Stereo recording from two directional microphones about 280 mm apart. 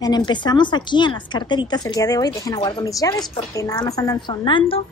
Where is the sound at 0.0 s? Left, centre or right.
Centre.